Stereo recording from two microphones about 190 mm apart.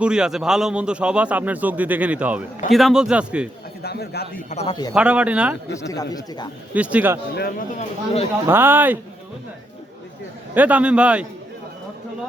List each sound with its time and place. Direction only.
0.0 s a man's voice: 5° right (ahead or behind)
3.8 s a man's voice: 60° left (ahead or behind)
4.4 s speech: 35° left (ahead or behind)
4.9 s a man's voice: 5° right (ahead or behind)
5.9 s speech: 20° left (ahead or behind)
6.7 s a man's voice: 5° right (ahead or behind)
7.8 s speech: 30° left (ahead or behind)
8.4 s a man's voice: 10° right (ahead or behind)
10.5 s a man's voice: 10° right (ahead or behind)